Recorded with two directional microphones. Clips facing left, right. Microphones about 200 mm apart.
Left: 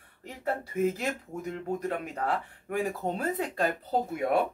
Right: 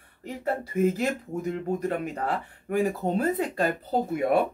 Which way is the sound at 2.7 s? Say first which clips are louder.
Right 5 dB; centre (ahead or behind).